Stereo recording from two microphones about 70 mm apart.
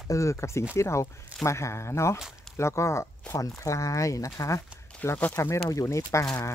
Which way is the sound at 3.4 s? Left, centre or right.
Left.